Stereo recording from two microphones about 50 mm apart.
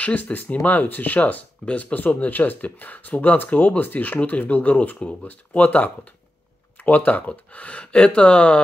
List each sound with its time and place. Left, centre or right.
0.0 s speech: left